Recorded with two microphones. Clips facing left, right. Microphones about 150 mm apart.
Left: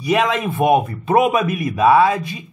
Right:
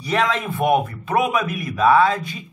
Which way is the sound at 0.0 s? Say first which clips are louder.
Left 4 dB; 15° left (ahead or behind).